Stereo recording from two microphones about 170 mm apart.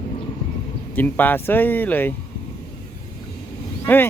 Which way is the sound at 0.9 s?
10° left (ahead or behind).